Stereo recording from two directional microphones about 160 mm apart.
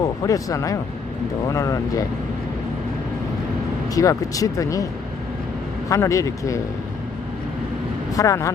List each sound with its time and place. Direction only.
0.0 s speech: 20° left (ahead or behind)
3.9 s speech: 20° left (ahead or behind)
5.9 s speech: 20° left (ahead or behind)
8.1 s speech: 20° left (ahead or behind)